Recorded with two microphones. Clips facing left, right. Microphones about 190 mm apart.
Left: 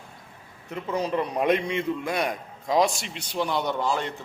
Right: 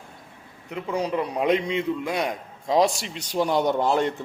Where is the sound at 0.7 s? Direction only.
10° right (ahead or behind).